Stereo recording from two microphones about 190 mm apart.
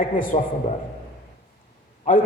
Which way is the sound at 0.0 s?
45° left (ahead or behind).